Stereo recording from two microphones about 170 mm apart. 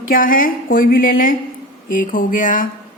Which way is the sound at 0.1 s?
55° left (ahead or behind).